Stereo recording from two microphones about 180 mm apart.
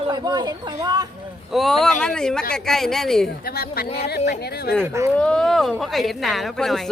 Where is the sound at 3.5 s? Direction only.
55° left (ahead or behind).